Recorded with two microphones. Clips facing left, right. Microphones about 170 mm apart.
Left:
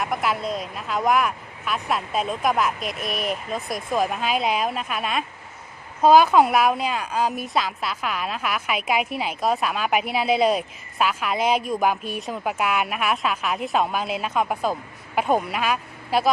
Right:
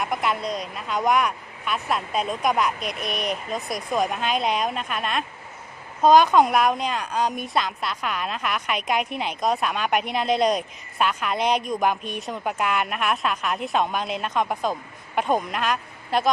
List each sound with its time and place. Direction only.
0.0 s a woman's voice: centre (ahead or behind)